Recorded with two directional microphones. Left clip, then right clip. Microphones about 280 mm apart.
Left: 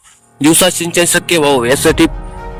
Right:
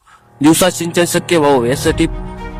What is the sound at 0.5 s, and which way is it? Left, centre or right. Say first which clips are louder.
A man's voice: left 2 dB; left.